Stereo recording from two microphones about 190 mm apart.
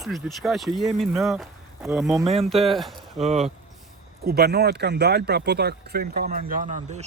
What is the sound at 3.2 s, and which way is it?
Speech, 35° right (ahead or behind).